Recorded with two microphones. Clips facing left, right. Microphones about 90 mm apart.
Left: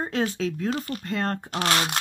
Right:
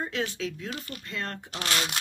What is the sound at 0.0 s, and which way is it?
Speech, 35° left (ahead or behind).